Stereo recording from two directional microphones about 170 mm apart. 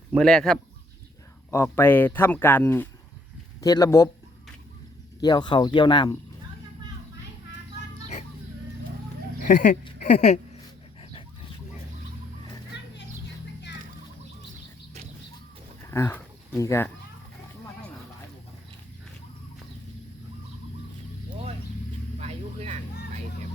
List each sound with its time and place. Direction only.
0.2 s speech: 5° left (ahead or behind)
1.5 s speech: 15° left (ahead or behind)
5.2 s speech: 25° left (ahead or behind)
9.5 s speech: 50° left (ahead or behind)
12.7 s a sound: 90° left
15.9 s speech: 15° left (ahead or behind)
22.2 s vehicle: 40° right (ahead or behind)